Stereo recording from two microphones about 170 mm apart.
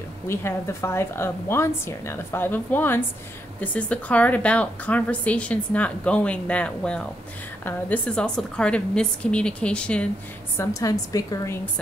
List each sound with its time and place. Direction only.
0.3 s a woman's voice: 15° left (ahead or behind)
10.6 s a woman's voice: 20° left (ahead or behind)